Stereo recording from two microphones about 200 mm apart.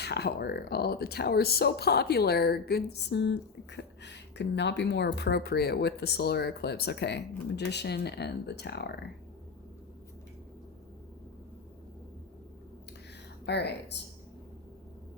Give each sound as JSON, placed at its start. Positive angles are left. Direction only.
{"t": 0.0, "sound": "speech", "side_deg": 55}
{"t": 13.4, "sound": "speech", "side_deg": 55}